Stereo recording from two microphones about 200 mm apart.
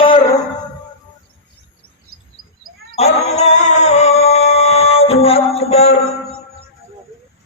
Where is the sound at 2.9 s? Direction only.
30° left (ahead or behind).